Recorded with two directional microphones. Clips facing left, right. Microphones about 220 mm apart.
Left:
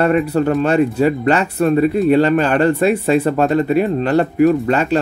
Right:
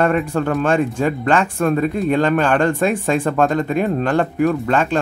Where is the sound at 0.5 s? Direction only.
5° left (ahead or behind).